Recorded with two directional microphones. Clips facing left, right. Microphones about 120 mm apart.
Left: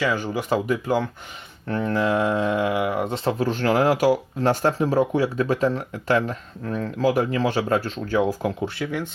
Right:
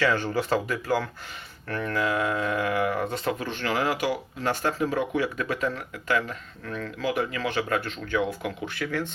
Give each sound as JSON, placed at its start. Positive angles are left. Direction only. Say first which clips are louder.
{"t": 0.0, "sound": "speech", "louder": "even", "side_deg": 10}
{"t": 3.3, "sound": "speech", "louder": "left 8 dB", "side_deg": 40}